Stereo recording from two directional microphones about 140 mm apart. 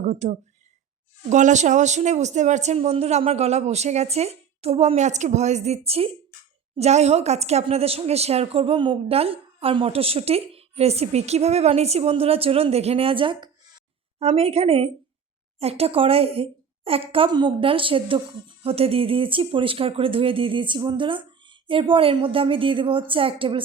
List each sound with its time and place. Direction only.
0.1 s a woman's voice: 60° right (ahead or behind); by 23.6 s 40° right (ahead or behind)